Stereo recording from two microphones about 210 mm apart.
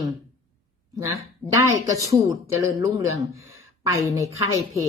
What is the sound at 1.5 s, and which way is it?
Speech, 15° right (ahead or behind).